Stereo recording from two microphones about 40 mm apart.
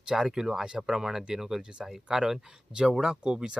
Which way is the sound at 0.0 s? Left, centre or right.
Centre.